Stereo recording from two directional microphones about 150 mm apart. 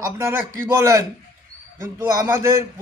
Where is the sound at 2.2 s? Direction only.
20° right (ahead or behind).